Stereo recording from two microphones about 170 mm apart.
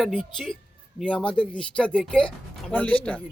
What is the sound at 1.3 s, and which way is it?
Speech, 30° left (ahead or behind).